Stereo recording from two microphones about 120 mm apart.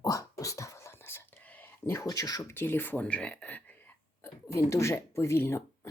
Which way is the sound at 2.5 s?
20° left (ahead or behind).